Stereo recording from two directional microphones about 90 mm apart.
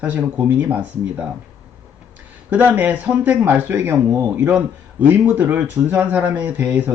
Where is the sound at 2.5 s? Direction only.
20° right (ahead or behind).